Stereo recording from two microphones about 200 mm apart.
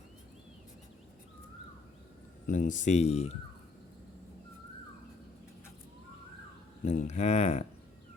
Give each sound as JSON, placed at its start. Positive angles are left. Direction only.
{"t": 2.5, "sound": "speech", "side_deg": 40}
{"t": 6.8, "sound": "speech", "side_deg": 35}